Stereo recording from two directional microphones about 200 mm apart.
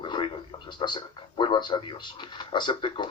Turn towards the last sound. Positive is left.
turn(degrees=25)  # may be behind; listen again after turning